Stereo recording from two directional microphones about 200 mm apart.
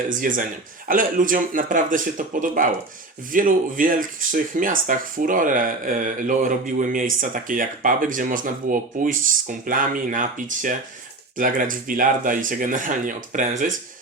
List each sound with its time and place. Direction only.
0.1 s speech: 40° right (ahead or behind)